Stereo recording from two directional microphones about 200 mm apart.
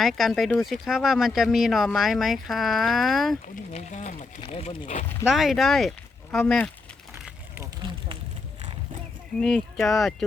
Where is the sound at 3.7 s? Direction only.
35° left (ahead or behind).